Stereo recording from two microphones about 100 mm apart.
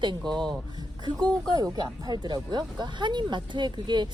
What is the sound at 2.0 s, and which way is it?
Speech, 45° right (ahead or behind).